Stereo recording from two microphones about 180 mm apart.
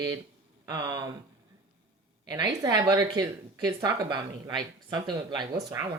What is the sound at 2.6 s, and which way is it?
Speech, 20° right (ahead or behind).